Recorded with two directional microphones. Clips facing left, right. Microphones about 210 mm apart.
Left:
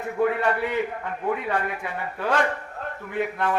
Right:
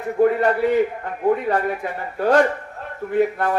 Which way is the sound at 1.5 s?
40° right (ahead or behind).